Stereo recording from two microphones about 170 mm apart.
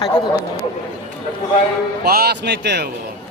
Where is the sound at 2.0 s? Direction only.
70° right (ahead or behind).